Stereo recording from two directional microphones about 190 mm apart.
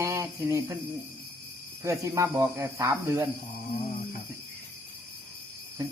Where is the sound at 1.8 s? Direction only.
15° right (ahead or behind).